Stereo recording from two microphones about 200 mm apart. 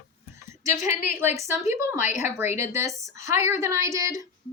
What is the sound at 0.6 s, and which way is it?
Speech, 15° right (ahead or behind).